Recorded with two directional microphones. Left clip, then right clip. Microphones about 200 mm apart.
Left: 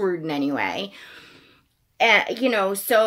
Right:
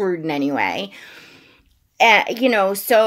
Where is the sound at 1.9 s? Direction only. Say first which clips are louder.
Right 4 dB; 35° right (ahead or behind).